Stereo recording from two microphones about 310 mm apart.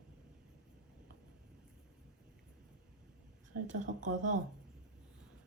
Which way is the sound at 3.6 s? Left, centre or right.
Right.